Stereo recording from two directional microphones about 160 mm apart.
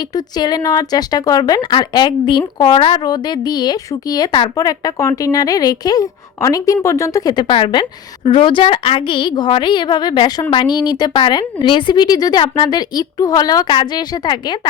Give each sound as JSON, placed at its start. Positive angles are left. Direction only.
{"t": 0.3, "sound": "a woman's voice", "side_deg": 25}